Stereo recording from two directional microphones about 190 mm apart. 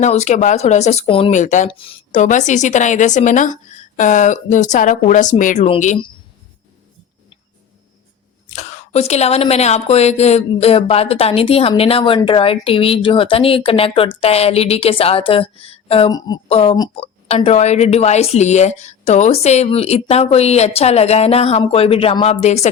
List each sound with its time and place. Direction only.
0.0 s speech: 35° left (ahead or behind)
8.4 s speech: 35° left (ahead or behind)